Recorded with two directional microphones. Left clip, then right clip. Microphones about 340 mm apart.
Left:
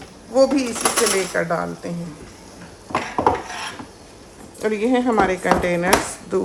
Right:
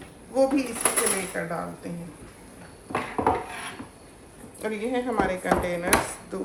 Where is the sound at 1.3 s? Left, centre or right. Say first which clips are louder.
Left 9 dB; centre.